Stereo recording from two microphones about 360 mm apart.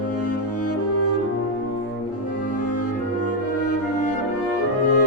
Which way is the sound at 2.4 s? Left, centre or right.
Left.